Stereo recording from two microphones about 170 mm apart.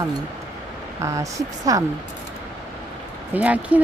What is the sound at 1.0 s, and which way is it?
Speech, 20° right (ahead or behind).